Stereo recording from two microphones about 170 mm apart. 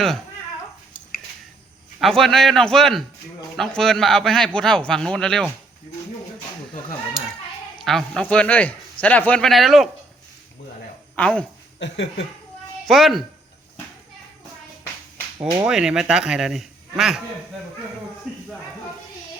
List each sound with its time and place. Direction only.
2.0 s a man's voice: centre (ahead or behind)
7.8 s speech: centre (ahead or behind)
11.1 s speech: 5° left (ahead or behind)
11.8 s speech: 90° left
12.9 s a man's voice: centre (ahead or behind)
15.5 s a man's voice: 5° right (ahead or behind)